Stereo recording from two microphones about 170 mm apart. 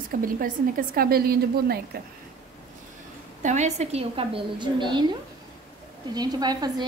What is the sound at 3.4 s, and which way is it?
A woman's voice, 45° right (ahead or behind).